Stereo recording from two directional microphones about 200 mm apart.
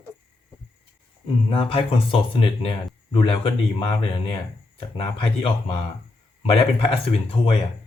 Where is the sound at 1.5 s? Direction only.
25° left (ahead or behind).